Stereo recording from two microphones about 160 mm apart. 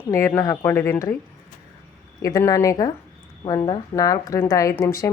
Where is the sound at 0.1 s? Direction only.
15° left (ahead or behind).